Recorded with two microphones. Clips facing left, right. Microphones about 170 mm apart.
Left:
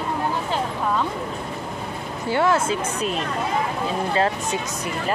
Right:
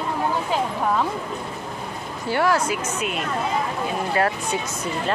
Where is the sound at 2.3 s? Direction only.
20° left (ahead or behind).